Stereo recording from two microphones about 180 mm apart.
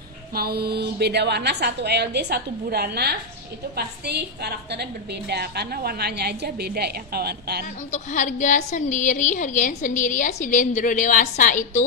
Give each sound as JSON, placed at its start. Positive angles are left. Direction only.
{"t": 0.3, "sound": "a woman's voice", "side_deg": -60}
{"t": 7.9, "sound": "a woman's voice", "side_deg": 45}